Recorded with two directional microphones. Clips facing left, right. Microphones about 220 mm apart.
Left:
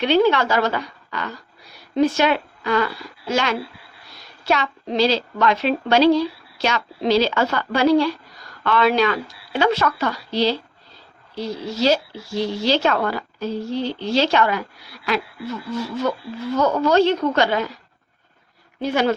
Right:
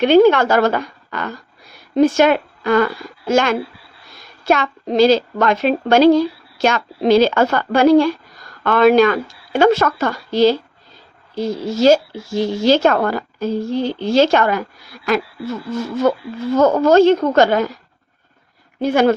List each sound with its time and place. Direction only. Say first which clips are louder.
0.0 s a woman's voice: right 6 dB; 50° right (ahead or behind)
18.8 s speech: right 6 dB; 50° right (ahead or behind)